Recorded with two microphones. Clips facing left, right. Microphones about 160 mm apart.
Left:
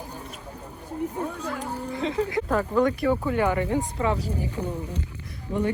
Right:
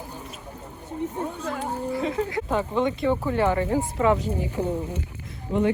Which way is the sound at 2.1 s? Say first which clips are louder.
Left 1 dB; 25° right (ahead or behind).